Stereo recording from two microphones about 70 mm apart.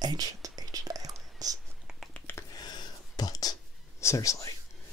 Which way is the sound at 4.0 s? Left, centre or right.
Left.